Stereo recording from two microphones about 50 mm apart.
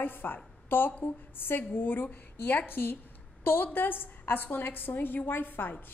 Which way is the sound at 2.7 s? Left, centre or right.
Left.